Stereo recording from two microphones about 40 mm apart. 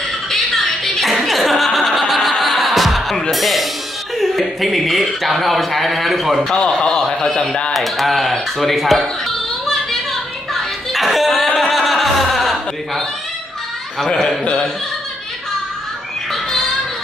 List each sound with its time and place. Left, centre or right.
0.3 s music: centre
4.2 s speech: centre
6.6 s a man's voice: centre
10.5 s a sound: centre
13.9 s a man's voice: centre
14.4 s speech: left